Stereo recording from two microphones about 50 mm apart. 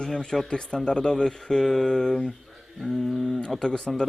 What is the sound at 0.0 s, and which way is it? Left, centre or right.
Speech, centre.